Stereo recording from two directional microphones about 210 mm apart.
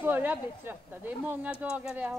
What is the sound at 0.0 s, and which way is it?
Speech, 10° right (ahead or behind).